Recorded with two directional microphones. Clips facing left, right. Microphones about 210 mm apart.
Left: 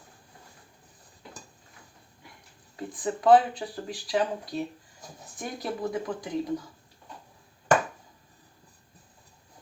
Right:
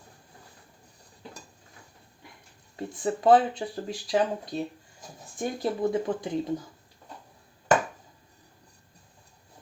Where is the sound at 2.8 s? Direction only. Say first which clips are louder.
Right 2 dB; 25° right (ahead or behind).